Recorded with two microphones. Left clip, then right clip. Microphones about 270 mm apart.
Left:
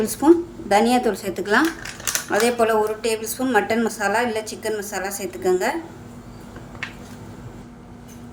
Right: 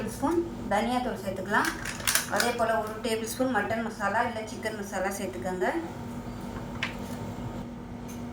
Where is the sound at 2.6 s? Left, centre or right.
Left.